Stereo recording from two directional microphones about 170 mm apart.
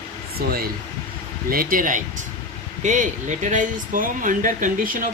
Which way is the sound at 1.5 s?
55° right (ahead or behind).